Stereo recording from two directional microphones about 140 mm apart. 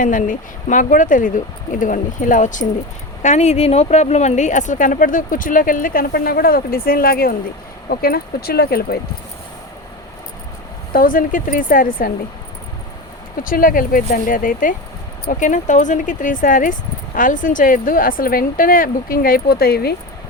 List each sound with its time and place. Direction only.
0.0 s speech: 70° left (ahead or behind)
3.2 s speech: 55° left (ahead or behind); by 8.8 s 90° left
10.9 s speech: 85° left
13.3 s speech: 85° left